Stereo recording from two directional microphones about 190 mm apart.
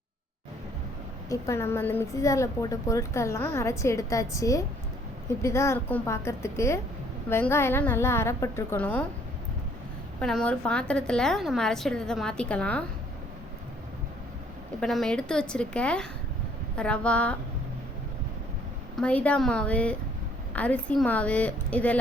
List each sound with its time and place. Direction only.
1.3 s a woman's voice: 15° left (ahead or behind)
10.2 s a woman's voice: 5° left (ahead or behind)
14.8 s a woman's voice: centre (ahead or behind)
18.9 s a woman's voice: 5° left (ahead or behind)